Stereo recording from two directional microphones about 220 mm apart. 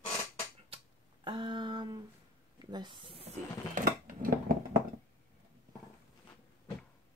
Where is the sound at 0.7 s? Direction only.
20° right (ahead or behind).